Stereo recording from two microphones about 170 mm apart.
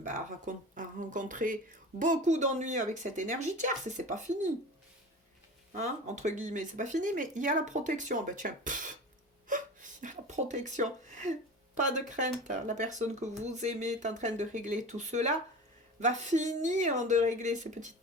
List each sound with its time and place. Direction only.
0.0 s speech: 50° right (ahead or behind)
5.7 s speech: 45° right (ahead or behind)
9.5 s a sound: 50° right (ahead or behind)
11.8 s speech: 45° right (ahead or behind)